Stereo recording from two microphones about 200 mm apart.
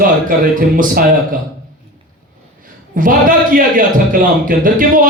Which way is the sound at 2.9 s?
45° right (ahead or behind).